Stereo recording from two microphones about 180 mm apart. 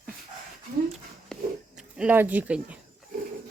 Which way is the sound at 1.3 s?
5° left (ahead or behind).